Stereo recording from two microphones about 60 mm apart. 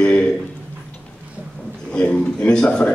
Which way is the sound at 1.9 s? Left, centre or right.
Centre.